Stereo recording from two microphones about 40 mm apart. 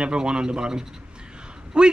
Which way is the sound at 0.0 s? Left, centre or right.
Right.